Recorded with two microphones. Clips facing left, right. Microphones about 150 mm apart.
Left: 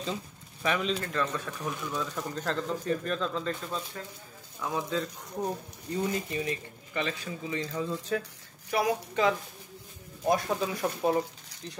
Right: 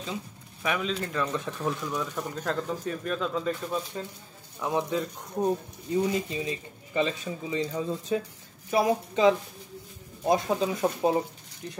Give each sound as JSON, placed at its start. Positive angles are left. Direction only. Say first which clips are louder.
{"t": 0.0, "sound": "pigeon", "louder": "left 1 dB", "side_deg": -5}
{"t": 1.1, "sound": "speech", "louder": "right 2 dB", "side_deg": -20}
{"t": 2.1, "sound": "speech", "louder": "right 2 dB", "side_deg": -5}
{"t": 4.6, "sound": "speech", "louder": "right 3 dB", "side_deg": -20}